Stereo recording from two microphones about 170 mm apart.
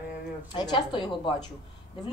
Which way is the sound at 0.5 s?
25° left (ahead or behind).